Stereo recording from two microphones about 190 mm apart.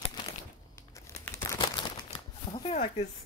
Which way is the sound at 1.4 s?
15° left (ahead or behind).